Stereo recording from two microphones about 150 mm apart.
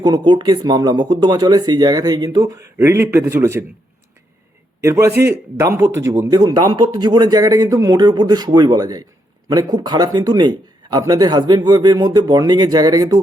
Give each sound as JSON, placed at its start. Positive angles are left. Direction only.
{"t": 0.0, "sound": "speech", "side_deg": -30}
{"t": 4.8, "sound": "speech", "side_deg": -20}